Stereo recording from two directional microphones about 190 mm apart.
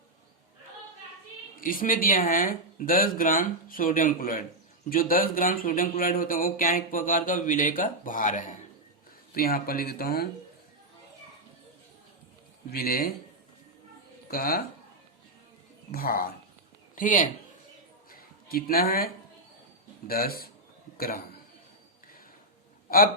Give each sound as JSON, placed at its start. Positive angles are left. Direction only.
{"t": 1.6, "sound": "speech", "side_deg": 45}
{"t": 12.7, "sound": "speech", "side_deg": 55}
{"t": 14.3, "sound": "speech", "side_deg": 55}
{"t": 15.9, "sound": "speech", "side_deg": 50}
{"t": 18.1, "sound": "a sound", "side_deg": 50}
{"t": 20.1, "sound": "speech", "side_deg": 50}